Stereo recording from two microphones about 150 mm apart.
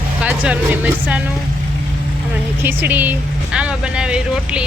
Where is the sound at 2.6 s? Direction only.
10° right (ahead or behind).